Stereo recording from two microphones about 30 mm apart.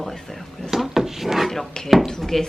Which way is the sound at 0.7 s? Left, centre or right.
Centre.